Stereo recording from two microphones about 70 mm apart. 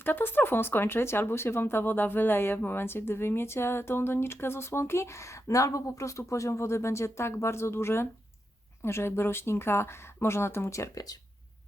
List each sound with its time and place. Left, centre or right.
0.0 s speech: left